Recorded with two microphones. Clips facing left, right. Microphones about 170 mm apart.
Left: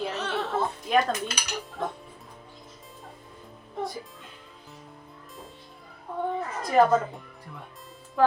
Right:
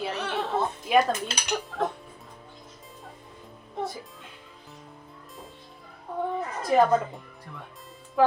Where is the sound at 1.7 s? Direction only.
90° right.